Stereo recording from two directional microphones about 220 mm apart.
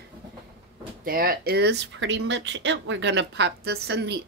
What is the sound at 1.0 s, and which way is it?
A woman's voice, 40° right (ahead or behind).